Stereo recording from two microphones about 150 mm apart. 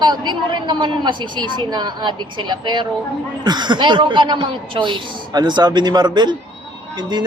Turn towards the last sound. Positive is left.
turn(degrees=-30)  # may be behind; listen again after turning